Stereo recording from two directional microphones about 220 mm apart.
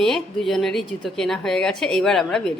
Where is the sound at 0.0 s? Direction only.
Centre (ahead or behind).